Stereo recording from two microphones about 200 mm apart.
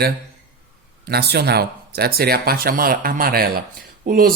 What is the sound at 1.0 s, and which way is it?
A man's voice, 55° right (ahead or behind).